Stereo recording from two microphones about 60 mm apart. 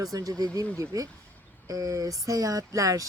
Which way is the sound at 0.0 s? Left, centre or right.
Right.